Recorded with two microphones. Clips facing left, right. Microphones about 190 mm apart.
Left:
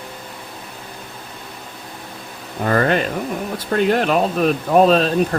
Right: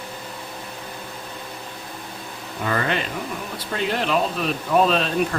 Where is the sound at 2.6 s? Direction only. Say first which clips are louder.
Left 7 dB; 45° left (ahead or behind).